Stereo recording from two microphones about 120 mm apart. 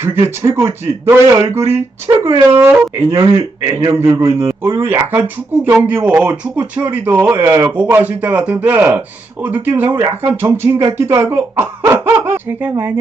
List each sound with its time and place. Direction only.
0.0 s speech: 20° right (ahead or behind)